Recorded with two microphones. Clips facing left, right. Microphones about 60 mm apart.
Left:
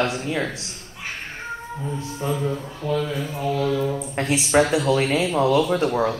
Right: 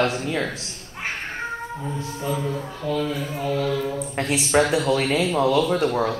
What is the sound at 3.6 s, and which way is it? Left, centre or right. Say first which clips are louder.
Mantra: left 2 dB; centre.